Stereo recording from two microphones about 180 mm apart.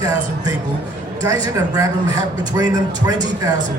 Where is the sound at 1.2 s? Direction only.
20° right (ahead or behind).